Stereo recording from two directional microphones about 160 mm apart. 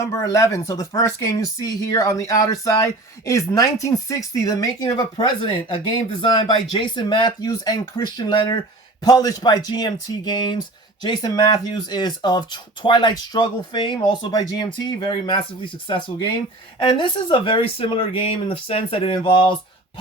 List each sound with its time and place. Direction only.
0.0 s speech: 20° left (ahead or behind)
6.2 s speech: 30° left (ahead or behind)